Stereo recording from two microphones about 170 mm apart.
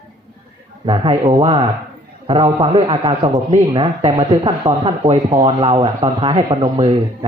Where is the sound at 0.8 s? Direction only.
30° right (ahead or behind).